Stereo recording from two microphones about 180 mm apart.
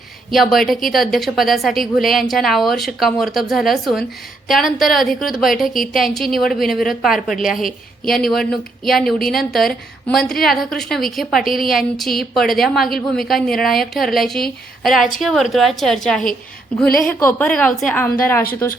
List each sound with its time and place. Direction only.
0.3 s a woman's voice: centre (ahead or behind)